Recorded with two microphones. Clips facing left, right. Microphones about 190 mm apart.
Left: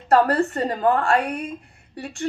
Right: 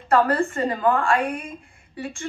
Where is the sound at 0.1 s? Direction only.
40° left (ahead or behind).